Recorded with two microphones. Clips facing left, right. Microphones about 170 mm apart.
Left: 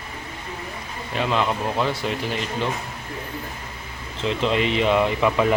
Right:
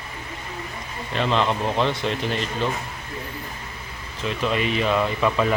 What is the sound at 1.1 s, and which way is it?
Speech, 10° left (ahead or behind).